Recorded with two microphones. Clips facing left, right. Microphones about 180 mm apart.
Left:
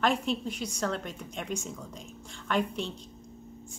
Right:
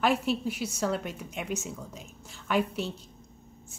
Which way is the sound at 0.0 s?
5° right (ahead or behind).